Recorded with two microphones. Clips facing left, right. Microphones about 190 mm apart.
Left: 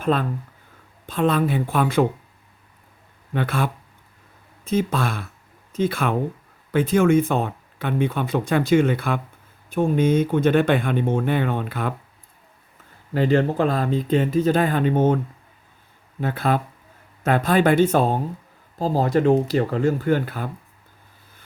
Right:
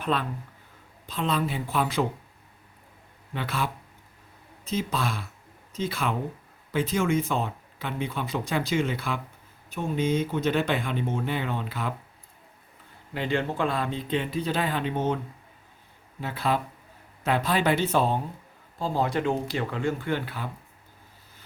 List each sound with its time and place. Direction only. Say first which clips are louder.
0.0 s speech: left 6 dB; 45° left (ahead or behind)
3.3 s speech: left 6 dB; 55° left (ahead or behind)
13.1 s speech: left 8 dB; 40° left (ahead or behind)
16.2 s speech: left 5 dB; 50° left (ahead or behind)